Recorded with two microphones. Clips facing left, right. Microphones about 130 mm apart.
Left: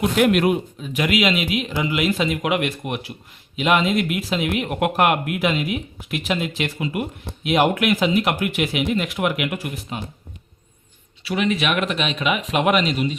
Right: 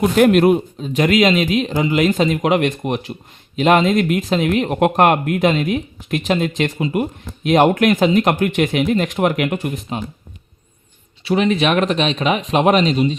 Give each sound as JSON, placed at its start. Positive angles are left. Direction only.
{"t": 0.0, "sound": "speech", "side_deg": -35}
{"t": 11.2, "sound": "speech", "side_deg": -30}